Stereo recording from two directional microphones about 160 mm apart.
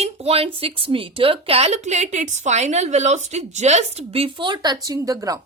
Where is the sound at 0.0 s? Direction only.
40° right (ahead or behind).